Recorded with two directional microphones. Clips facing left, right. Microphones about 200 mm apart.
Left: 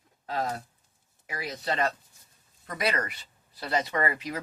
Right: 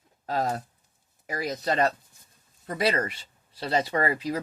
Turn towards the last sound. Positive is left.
turn(degrees=-35)  # may be behind; listen again after turning